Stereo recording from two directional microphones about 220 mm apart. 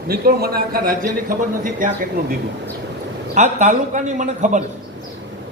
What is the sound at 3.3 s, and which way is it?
A man's voice, 30° right (ahead or behind).